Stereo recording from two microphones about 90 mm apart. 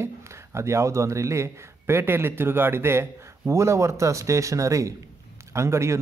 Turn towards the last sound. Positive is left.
turn(degrees=-30)  # may be behind; listen again after turning